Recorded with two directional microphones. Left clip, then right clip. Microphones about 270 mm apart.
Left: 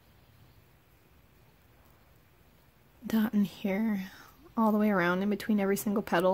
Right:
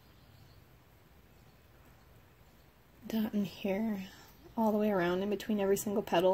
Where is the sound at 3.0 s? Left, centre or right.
Left.